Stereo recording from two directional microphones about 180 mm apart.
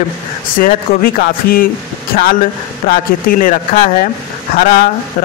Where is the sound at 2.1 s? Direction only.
40° left (ahead or behind).